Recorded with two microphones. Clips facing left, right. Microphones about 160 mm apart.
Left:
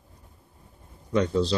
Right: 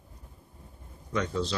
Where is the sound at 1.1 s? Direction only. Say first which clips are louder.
Left 6 dB; 35° left (ahead or behind).